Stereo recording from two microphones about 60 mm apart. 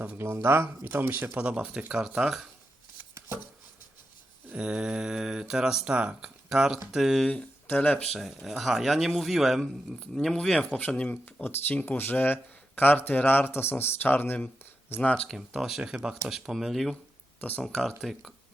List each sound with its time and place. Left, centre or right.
0.4 s speech: right
1.4 s speech: right
4.4 s speech: centre
7.7 s speech: left
8.0 s speech: centre
10.8 s speech: centre
14.6 s a sound: left
15.0 s speech: centre
15.4 s speech: centre
15.8 s speech: centre
16.2 s speech: centre
18.0 s speech: centre